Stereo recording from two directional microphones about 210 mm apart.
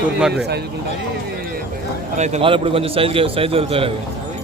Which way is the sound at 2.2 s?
35° right (ahead or behind).